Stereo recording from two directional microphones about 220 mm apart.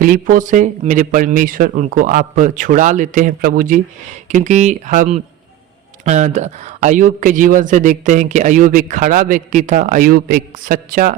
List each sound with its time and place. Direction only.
0.0 s a man's voice: 40° right (ahead or behind)